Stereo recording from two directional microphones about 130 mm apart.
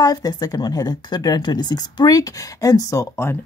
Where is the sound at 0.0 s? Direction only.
30° left (ahead or behind).